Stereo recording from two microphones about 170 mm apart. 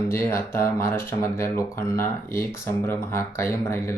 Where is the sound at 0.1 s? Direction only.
15° left (ahead or behind).